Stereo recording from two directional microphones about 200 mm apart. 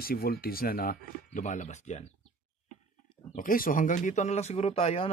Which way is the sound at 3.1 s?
30° left (ahead or behind).